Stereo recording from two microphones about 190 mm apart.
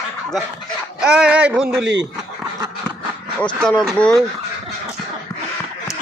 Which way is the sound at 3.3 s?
5° left (ahead or behind).